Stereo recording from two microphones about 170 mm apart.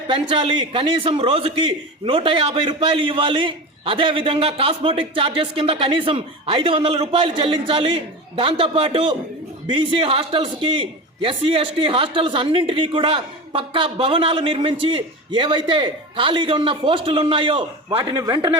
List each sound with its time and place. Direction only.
0.1 s a man's voice: 30° right (ahead or behind)